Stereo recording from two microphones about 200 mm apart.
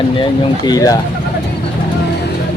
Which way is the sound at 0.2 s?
20° left (ahead or behind).